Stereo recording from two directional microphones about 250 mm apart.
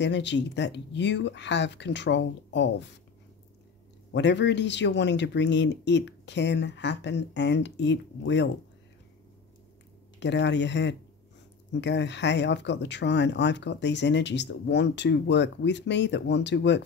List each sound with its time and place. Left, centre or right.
0.0 s speech: left
4.1 s speech: left
10.2 s speech: left